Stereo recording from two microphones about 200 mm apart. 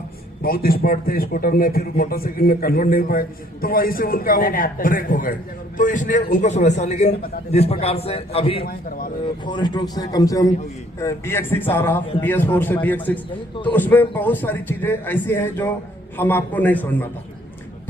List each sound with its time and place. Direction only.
0.4 s a man's voice: 50° left (ahead or behind); by 8.6 s 30° left (ahead or behind)
8.6 s a man's voice: 45° left (ahead or behind)
9.5 s a man's voice: 20° left (ahead or behind)